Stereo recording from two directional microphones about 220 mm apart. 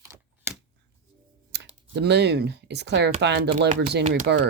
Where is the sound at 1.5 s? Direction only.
50° right (ahead or behind).